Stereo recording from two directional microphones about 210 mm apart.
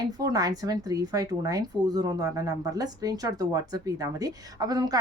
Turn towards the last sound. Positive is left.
turn(degrees=-15)  # may be behind; listen again after turning